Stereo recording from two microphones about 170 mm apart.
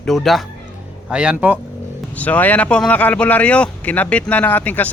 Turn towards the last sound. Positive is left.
turn(degrees=10)  # may be behind; listen again after turning